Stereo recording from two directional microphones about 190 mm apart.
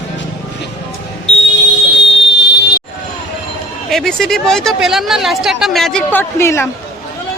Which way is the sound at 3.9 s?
Centre (ahead or behind).